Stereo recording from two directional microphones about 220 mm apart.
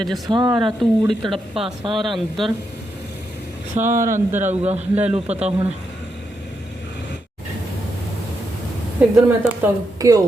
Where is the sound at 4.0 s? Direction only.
10° right (ahead or behind).